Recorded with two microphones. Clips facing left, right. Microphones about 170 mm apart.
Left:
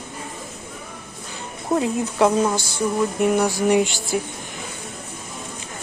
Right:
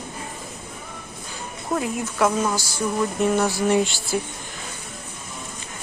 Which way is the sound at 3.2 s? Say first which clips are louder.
Left 2 dB; 15° left (ahead or behind).